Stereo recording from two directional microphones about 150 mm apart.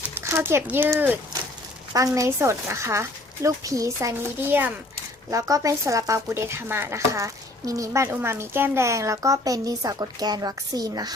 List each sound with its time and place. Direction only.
0.1 s speech: 15° right (ahead or behind)